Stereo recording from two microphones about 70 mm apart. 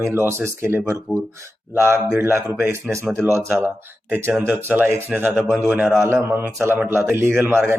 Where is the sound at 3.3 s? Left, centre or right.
Right.